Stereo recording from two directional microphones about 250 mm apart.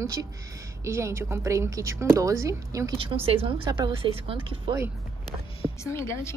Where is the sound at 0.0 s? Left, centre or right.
Centre.